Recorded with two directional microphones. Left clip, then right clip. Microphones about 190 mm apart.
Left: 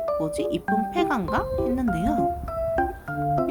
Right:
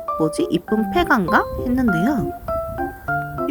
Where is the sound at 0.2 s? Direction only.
25° right (ahead or behind).